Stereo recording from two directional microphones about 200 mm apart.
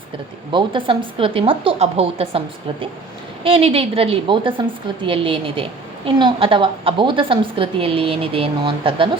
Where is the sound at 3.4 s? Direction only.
30° right (ahead or behind).